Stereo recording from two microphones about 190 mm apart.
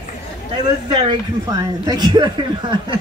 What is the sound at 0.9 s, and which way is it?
A woman's voice, 20° right (ahead or behind).